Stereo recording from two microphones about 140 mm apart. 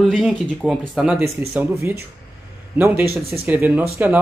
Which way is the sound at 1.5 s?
15° right (ahead or behind).